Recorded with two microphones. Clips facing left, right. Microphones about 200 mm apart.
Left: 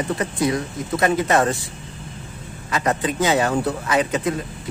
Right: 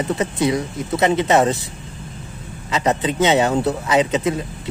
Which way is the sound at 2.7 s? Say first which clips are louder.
Right 2 dB; 20° right (ahead or behind).